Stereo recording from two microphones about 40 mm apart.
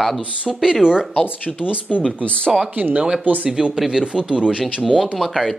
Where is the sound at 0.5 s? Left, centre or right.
Centre.